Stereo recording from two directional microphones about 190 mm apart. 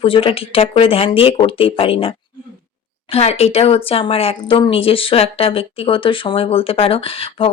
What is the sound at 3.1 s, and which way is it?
Speech, 35° left (ahead or behind).